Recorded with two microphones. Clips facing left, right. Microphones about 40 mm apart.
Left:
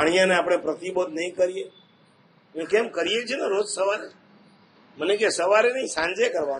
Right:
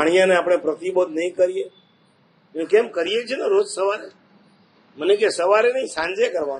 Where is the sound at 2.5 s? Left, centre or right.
Right.